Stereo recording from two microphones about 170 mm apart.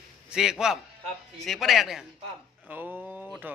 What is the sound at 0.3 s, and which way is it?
A man's voice, 5° right (ahead or behind).